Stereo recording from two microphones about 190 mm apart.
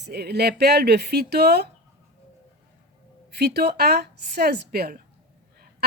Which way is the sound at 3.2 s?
60° right (ahead or behind).